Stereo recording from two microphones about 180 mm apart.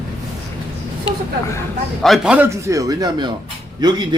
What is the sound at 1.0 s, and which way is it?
Speech, 25° left (ahead or behind).